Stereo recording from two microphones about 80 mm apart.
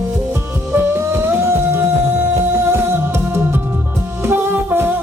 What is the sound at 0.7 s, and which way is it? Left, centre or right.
Music, right.